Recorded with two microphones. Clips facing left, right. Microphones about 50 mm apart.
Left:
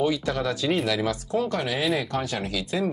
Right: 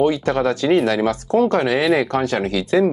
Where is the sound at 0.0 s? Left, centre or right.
Right.